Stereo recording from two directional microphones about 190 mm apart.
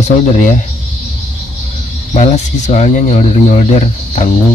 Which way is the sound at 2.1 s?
35° left (ahead or behind).